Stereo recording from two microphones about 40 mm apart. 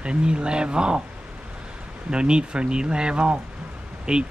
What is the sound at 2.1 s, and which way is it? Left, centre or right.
Speech, right.